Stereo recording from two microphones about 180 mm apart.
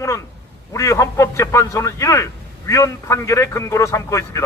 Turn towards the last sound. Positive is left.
turn(degrees=15)  # may be behind; listen again after turning